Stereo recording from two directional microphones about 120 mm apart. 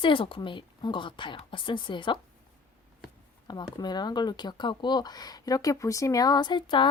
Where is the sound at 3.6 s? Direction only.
35° left (ahead or behind).